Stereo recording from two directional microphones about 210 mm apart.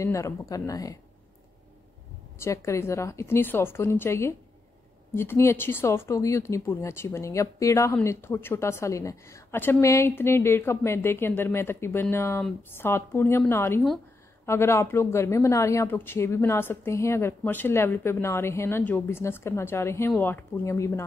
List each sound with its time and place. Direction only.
0.0 s speech: 15° left (ahead or behind)
2.3 s speech: 15° left (ahead or behind)